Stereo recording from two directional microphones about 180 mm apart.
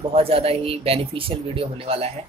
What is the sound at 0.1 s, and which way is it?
Speech, 30° right (ahead or behind).